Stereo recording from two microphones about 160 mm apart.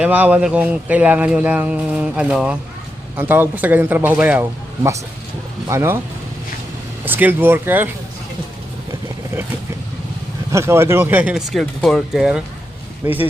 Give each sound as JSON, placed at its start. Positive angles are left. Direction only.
{"t": 0.0, "sound": "speech", "side_deg": -10}
{"t": 7.0, "sound": "speech", "side_deg": -10}
{"t": 10.5, "sound": "speech", "side_deg": -15}